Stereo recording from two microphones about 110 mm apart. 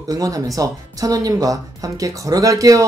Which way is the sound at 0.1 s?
35° right (ahead or behind).